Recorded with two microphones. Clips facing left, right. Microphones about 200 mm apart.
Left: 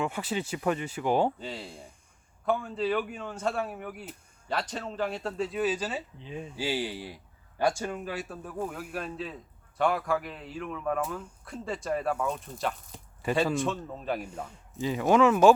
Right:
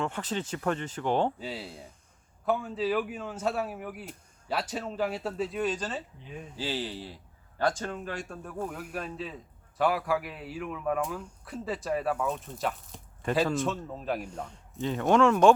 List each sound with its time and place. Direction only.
0.0 s speech: 10° left (ahead or behind)
1.4 s speech: 5° right (ahead or behind)